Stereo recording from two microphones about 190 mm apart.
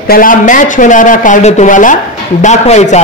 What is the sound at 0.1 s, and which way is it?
A woman's voice, 45° left (ahead or behind).